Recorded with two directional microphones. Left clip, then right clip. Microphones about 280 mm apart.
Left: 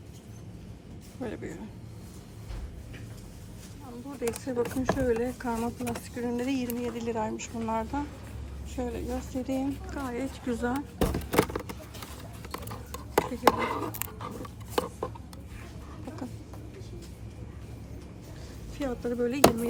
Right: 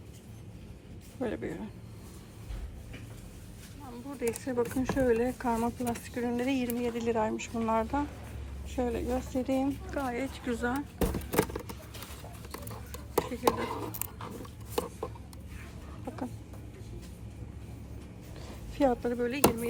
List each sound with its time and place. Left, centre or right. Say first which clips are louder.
1.2 s speech: right 3 dB; centre
4.2 s speech: left 1 dB; centre
12.5 s a sound: left 5 dB; centre
18.8 s speech: right 2 dB; centre